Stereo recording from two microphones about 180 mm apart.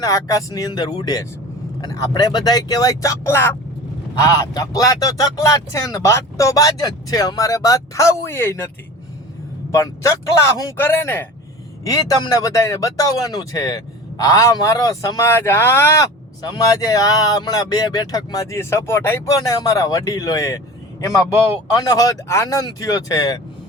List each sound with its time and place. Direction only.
0.0 s speech: 20° left (ahead or behind)
9.7 s speech: 15° left (ahead or behind)
21.7 s speech: 20° left (ahead or behind)